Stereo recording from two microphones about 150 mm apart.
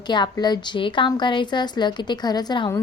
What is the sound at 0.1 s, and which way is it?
A woman's voice, 30° left (ahead or behind).